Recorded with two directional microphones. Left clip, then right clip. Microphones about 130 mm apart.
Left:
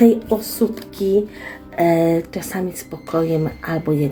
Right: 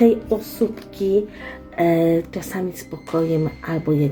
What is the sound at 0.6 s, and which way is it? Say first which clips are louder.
Speech: left 1 dB; 30° right (ahead or behind).